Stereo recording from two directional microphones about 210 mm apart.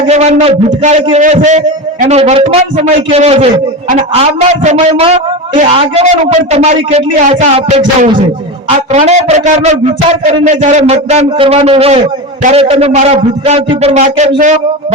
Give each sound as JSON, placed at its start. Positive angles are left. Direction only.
{"t": 0.1, "sound": "a man's voice", "side_deg": -30}
{"t": 8.9, "sound": "a man's voice", "side_deg": -30}